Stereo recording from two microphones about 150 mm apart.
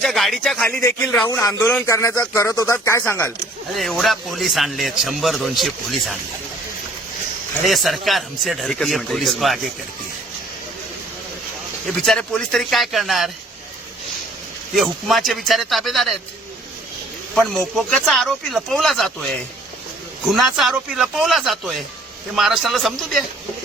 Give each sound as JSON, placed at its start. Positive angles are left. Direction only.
{"t": 0.0, "sound": "a man's voice", "side_deg": 0}
{"t": 0.6, "sound": "speech", "side_deg": 10}
{"t": 1.3, "sound": "speech", "side_deg": 20}
{"t": 3.8, "sound": "a man's voice", "side_deg": 0}
{"t": 7.6, "sound": "a man's voice", "side_deg": 0}
{"t": 11.9, "sound": "a man's voice", "side_deg": 5}
{"t": 14.8, "sound": "a man's voice", "side_deg": 0}
{"t": 17.3, "sound": "a man's voice", "side_deg": 0}